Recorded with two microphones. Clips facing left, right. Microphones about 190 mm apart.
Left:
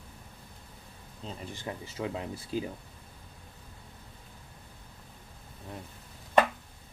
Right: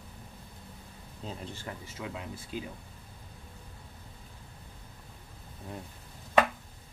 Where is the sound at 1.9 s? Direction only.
30° left (ahead or behind).